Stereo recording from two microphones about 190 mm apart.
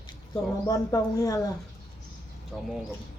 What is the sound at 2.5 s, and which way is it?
Speech, centre (ahead or behind).